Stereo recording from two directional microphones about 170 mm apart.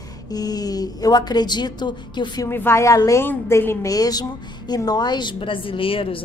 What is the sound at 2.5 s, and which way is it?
A woman's voice, 15° left (ahead or behind).